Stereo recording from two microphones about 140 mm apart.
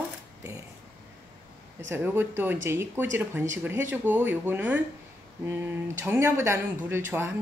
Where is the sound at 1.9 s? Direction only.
15° right (ahead or behind).